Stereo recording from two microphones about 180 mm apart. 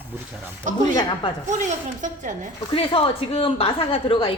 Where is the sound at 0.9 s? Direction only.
25° left (ahead or behind).